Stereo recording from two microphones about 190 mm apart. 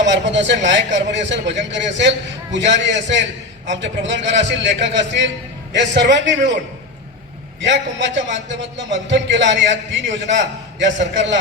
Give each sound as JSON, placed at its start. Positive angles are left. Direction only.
{"t": 0.0, "sound": "a man's voice", "side_deg": -70}
{"t": 7.6, "sound": "a man's voice", "side_deg": -70}